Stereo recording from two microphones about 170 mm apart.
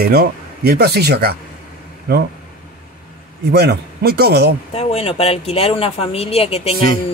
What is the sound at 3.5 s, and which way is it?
Speech, 70° right (ahead or behind).